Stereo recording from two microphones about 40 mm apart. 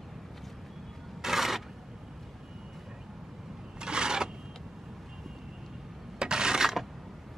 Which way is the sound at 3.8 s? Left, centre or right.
Right.